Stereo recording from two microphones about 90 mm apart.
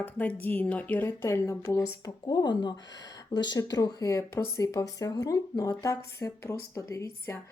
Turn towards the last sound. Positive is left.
turn(degrees=35)  # may be behind; listen again after turning